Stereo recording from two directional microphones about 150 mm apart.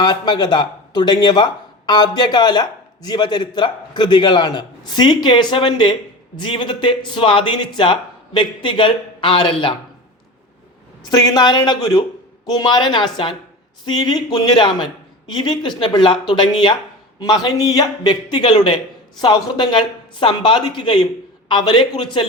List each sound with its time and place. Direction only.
0.0 s a man's voice: 30° left (ahead or behind)
11.0 s a man's voice: 30° left (ahead or behind)